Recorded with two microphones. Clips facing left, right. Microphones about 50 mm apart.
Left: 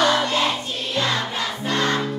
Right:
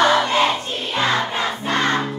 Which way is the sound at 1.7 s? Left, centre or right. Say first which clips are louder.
Right 2 dB; right.